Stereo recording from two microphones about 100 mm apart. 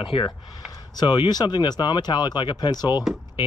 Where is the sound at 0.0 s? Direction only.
55° left (ahead or behind).